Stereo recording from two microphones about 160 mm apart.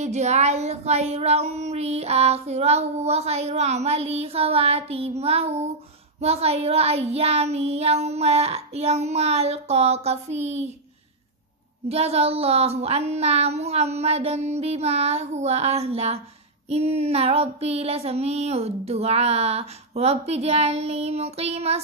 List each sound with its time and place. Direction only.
0.0 s speech: 45° right (ahead or behind)
11.9 s speech: 40° right (ahead or behind)